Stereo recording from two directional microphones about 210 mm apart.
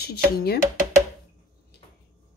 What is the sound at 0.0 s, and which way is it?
Speech, 50° left (ahead or behind).